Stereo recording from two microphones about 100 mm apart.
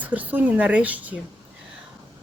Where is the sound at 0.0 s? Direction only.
15° right (ahead or behind).